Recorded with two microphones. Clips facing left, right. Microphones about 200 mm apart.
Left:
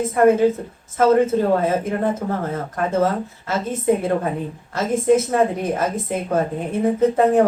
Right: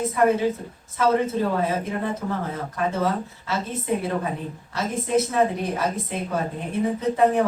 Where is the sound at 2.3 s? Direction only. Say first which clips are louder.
Left 4 dB; 50° left (ahead or behind).